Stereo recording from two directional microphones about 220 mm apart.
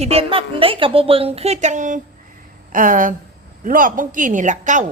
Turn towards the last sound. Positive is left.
turn(degrees=-35)  # may be behind; listen again after turning